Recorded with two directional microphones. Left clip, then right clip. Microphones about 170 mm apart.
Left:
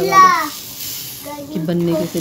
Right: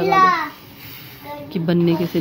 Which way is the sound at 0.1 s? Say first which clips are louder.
Left 5 dB; 45° right (ahead or behind).